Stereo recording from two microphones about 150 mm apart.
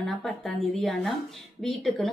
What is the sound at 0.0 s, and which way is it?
A woman's voice, centre (ahead or behind).